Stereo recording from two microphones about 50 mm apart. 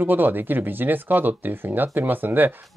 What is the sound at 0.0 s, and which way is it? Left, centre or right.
Speech, right.